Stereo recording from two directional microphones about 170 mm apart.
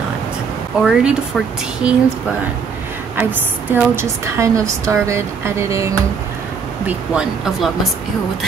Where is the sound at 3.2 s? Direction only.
10° right (ahead or behind).